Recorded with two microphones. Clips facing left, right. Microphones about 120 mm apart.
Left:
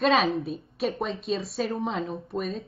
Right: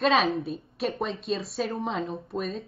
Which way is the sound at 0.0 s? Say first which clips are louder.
Left 1 dB; centre (ahead or behind).